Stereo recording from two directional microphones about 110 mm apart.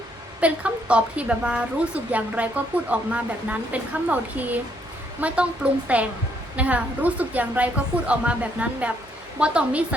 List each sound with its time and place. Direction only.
0.3 s a woman's voice: 10° right (ahead or behind)